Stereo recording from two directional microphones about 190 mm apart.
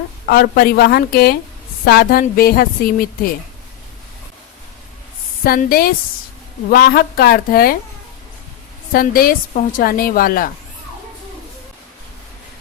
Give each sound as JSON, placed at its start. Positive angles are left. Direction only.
{"t": 0.3, "sound": "a woman's voice", "side_deg": 50}
{"t": 5.4, "sound": "a woman's voice", "side_deg": 50}
{"t": 8.9, "sound": "a woman's voice", "side_deg": 50}